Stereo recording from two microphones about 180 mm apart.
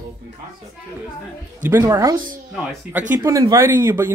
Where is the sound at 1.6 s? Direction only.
15° right (ahead or behind).